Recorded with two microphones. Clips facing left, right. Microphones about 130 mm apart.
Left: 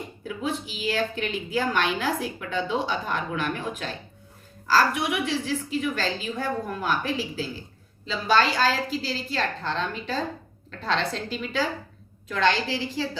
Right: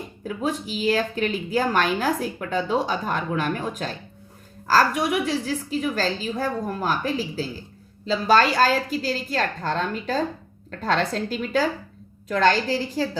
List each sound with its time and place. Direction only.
0.3 s a woman's voice: 40° right (ahead or behind)